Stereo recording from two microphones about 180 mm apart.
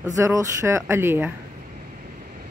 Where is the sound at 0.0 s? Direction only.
20° right (ahead or behind).